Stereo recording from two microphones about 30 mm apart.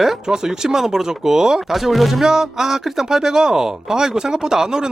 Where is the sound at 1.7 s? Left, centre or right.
Centre.